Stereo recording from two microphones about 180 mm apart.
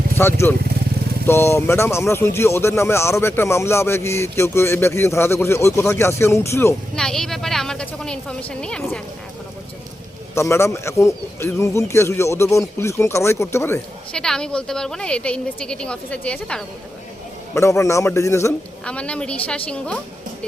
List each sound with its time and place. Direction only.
0.2 s speech: 15° left (ahead or behind)
6.9 s speech: 5° left (ahead or behind)
10.3 s speech: 15° left (ahead or behind)
17.5 s speech: 15° left (ahead or behind)